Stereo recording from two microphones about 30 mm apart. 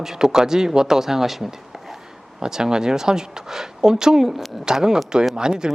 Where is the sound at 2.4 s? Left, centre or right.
Right.